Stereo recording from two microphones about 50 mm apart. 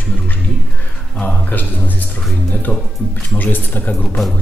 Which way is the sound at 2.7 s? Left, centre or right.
Left.